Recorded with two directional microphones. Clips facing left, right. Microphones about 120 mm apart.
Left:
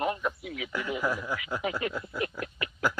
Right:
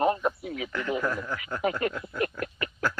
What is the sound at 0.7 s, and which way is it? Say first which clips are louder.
Speech: right 1 dB; 10° left (ahead or behind).